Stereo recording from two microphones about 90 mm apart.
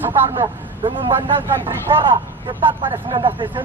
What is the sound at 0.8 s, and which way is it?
Speech, 65° right (ahead or behind).